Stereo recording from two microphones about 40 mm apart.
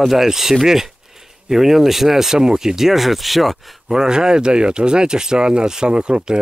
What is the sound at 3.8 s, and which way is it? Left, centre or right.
Speech, centre.